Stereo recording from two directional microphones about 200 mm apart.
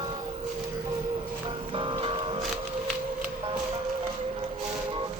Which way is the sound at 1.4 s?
25° right (ahead or behind).